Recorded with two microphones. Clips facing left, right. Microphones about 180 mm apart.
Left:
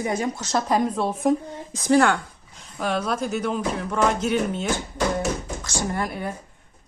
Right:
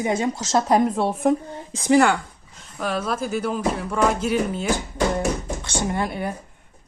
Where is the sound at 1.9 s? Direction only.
10° right (ahead or behind).